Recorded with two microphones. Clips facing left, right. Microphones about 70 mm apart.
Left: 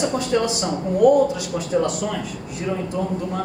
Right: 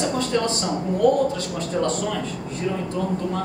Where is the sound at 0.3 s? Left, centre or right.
Centre.